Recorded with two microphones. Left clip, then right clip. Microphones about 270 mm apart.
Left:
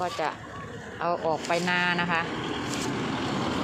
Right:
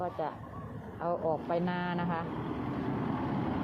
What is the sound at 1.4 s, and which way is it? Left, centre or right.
Speech, centre.